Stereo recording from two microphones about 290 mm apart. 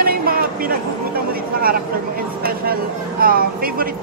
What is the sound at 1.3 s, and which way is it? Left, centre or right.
Vehicle, right.